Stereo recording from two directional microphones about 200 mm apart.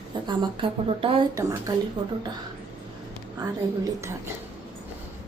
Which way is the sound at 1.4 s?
15° right (ahead or behind).